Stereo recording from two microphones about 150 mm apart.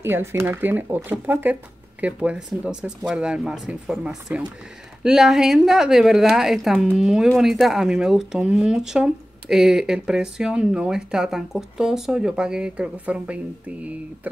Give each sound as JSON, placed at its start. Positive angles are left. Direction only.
{"t": 0.0, "sound": "speech", "side_deg": -15}